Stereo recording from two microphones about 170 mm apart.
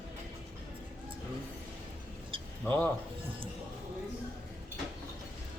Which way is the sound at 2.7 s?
10° left (ahead or behind).